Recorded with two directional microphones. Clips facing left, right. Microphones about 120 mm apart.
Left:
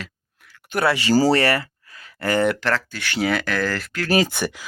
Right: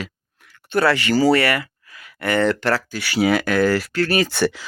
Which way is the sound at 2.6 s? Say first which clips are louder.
Right 2 dB; 10° right (ahead or behind).